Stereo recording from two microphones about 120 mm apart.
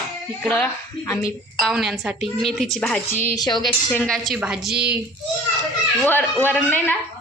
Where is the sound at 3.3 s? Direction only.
35° left (ahead or behind).